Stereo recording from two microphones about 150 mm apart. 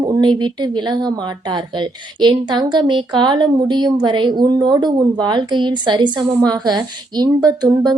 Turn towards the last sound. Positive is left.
turn(degrees=-25)  # may be behind; listen again after turning